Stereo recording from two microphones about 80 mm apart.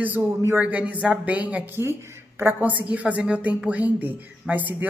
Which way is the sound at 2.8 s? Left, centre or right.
Centre.